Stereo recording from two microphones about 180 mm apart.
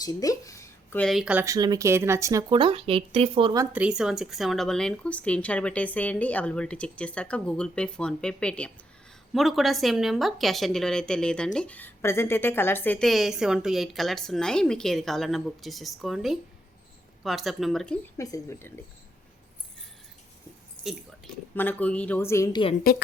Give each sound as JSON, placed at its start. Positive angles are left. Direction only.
{"t": 0.0, "sound": "speech", "side_deg": 20}
{"t": 3.7, "sound": "speech", "side_deg": -5}
{"t": 18.2, "sound": "speech", "side_deg": 15}
{"t": 21.5, "sound": "speech", "side_deg": 10}
{"t": 22.8, "sound": "a woman's voice", "side_deg": 55}